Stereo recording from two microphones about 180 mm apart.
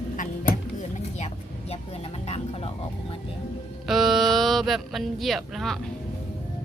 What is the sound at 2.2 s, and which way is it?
Music, 35° left (ahead or behind).